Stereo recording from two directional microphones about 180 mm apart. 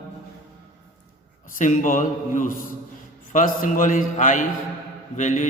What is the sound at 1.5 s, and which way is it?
Mantra, 45° left (ahead or behind).